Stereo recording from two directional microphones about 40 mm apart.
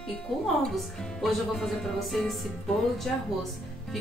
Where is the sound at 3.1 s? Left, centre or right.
Centre.